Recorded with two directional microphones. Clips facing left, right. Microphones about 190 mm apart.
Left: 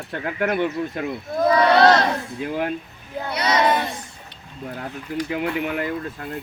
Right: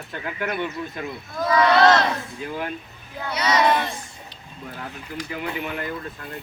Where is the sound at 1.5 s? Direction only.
35° left (ahead or behind).